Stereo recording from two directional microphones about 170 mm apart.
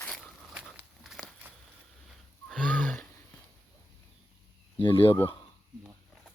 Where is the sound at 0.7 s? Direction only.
Centre (ahead or behind).